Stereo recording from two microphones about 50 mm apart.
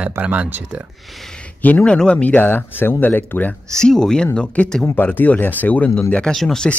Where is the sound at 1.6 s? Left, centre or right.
Left.